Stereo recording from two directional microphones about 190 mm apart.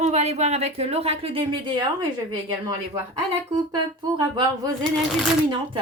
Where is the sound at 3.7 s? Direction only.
25° right (ahead or behind).